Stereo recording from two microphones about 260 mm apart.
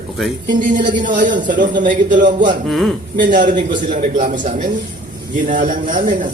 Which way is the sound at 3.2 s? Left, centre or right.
Right.